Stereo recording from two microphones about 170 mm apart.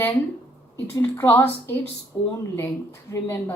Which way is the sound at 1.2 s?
10° left (ahead or behind).